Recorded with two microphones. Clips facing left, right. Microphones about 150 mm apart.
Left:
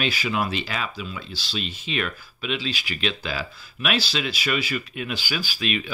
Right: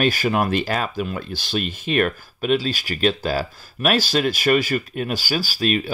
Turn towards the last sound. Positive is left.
turn(degrees=-45)  # may be behind; listen again after turning